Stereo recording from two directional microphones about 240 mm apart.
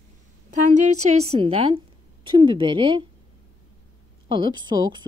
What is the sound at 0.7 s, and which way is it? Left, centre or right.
A woman's voice, right.